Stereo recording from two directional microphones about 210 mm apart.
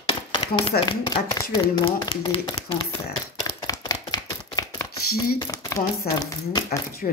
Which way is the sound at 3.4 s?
15° left (ahead or behind).